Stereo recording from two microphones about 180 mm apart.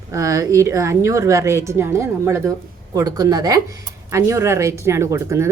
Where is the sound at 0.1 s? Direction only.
15° right (ahead or behind).